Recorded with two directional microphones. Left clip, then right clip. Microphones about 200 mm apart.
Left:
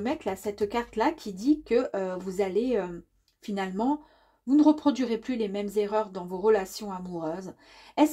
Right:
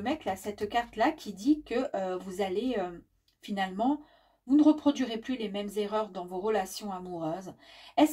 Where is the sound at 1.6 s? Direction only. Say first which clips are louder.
Left 5 dB; 35° left (ahead or behind).